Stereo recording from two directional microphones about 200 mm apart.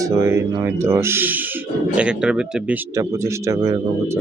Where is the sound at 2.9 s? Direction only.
15° right (ahead or behind).